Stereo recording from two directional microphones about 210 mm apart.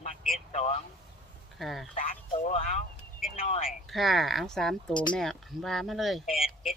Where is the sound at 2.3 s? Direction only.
30° left (ahead or behind).